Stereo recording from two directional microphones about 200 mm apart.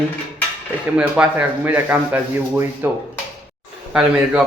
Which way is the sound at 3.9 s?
5° right (ahead or behind).